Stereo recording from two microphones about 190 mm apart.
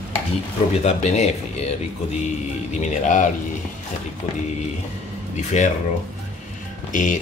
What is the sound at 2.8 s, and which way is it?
Speech, 40° left (ahead or behind).